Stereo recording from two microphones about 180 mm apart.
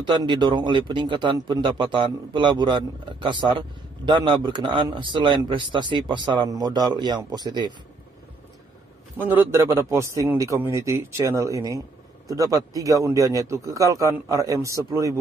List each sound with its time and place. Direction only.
0.0 s a man's voice: 25° right (ahead or behind)
9.2 s a man's voice: 10° right (ahead or behind)